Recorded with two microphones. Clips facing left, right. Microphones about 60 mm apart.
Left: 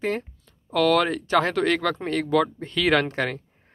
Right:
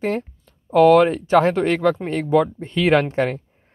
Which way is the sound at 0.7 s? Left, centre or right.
Right.